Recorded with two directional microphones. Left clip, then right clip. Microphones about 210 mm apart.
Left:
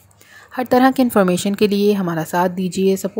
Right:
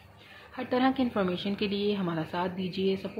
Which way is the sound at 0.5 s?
50° left (ahead or behind).